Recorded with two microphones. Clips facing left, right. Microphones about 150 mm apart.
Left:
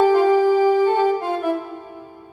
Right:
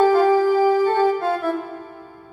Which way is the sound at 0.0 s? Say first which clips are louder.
Even; 15° left (ahead or behind).